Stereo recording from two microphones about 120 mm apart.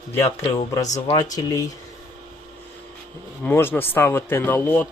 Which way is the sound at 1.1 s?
30° left (ahead or behind).